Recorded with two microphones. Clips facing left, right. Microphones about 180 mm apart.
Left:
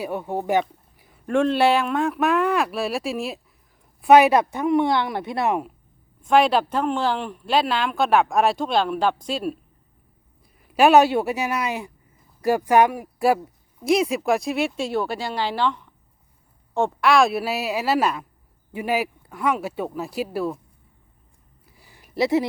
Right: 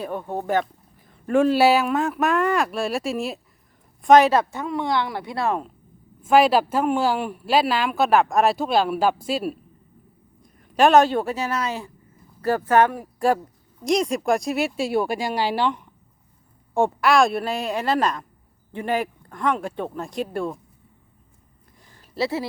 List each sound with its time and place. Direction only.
0.0 s speech: 10° left (ahead or behind)
0.9 s a sound: 10° left (ahead or behind)
1.3 s speech: 5° right (ahead or behind)
4.0 s speech: 10° left (ahead or behind)
6.2 s speech: 5° right (ahead or behind)
21.8 s a sound: 10° left (ahead or behind)